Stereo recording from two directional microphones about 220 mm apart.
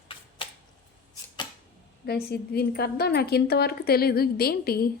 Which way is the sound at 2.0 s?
45° left (ahead or behind).